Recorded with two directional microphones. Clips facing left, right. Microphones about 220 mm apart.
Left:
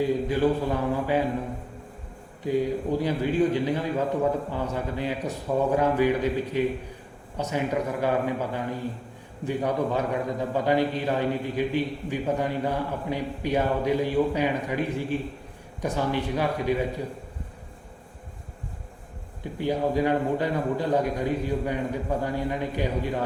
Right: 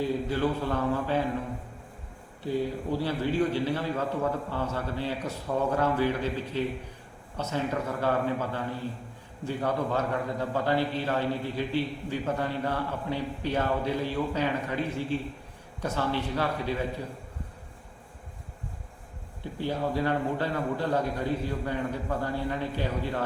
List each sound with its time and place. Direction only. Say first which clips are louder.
0.0 s a man's voice: left 4 dB; 15° left (ahead or behind)
2.4 s a man's voice: left 4 dB; 15° left (ahead or behind)
19.4 s a man's voice: left 4 dB; 15° left (ahead or behind)